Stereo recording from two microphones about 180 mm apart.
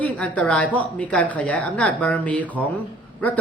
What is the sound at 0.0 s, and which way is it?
A woman's voice, 5° left (ahead or behind).